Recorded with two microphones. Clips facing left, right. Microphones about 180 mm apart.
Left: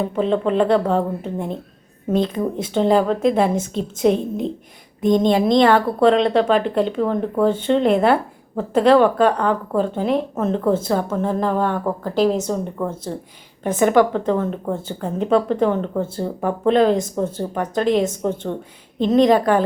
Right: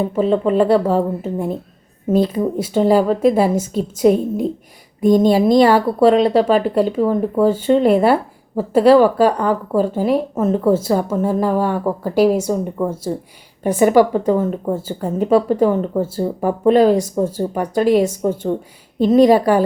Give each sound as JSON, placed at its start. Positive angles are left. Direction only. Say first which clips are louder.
{"t": 0.2, "sound": "a woman's voice", "louder": "right 3 dB", "side_deg": -5}